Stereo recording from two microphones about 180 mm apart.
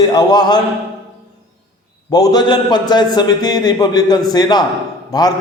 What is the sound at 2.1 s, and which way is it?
A man's voice, 20° left (ahead or behind).